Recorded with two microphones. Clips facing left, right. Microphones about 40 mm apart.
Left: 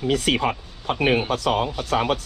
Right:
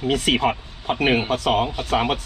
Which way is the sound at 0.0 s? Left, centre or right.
Centre.